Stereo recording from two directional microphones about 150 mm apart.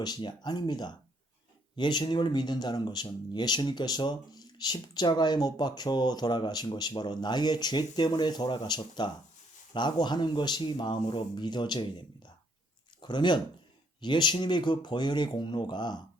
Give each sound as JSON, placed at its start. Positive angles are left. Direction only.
{"t": 0.0, "sound": "speech", "side_deg": 30}